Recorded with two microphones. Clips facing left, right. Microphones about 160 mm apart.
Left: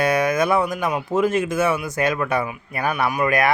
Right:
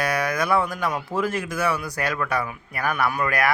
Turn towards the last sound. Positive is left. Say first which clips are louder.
# left 3 dB
turn(degrees=20)  # may be behind; listen again after turning